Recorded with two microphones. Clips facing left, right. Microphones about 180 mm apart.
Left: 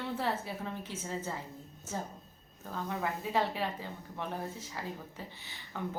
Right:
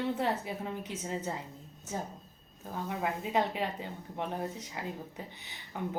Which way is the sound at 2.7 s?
20° right (ahead or behind).